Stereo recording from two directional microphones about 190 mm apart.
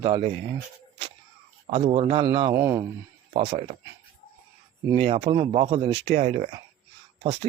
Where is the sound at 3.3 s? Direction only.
30° right (ahead or behind).